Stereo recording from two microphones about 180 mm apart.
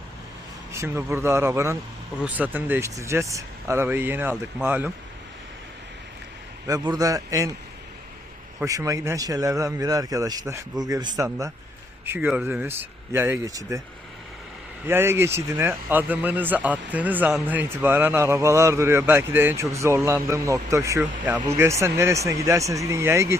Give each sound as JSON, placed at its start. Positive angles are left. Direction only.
{"t": 0.7, "sound": "speech", "side_deg": -15}
{"t": 6.7, "sound": "a man's voice", "side_deg": -20}
{"t": 8.5, "sound": "a man's voice", "side_deg": -15}
{"t": 14.8, "sound": "speech", "side_deg": -15}